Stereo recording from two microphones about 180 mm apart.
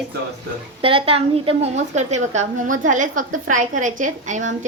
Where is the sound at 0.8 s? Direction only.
30° right (ahead or behind).